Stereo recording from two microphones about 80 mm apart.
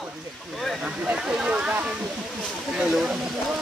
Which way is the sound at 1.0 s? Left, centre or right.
Centre.